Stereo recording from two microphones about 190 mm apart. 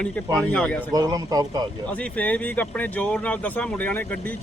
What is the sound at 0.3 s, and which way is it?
Speech, 5° left (ahead or behind).